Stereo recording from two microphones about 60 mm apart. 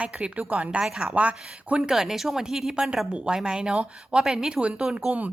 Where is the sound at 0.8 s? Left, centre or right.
Centre.